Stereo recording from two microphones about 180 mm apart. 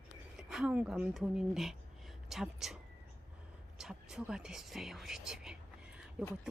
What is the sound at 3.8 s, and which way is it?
Speech, 5° right (ahead or behind).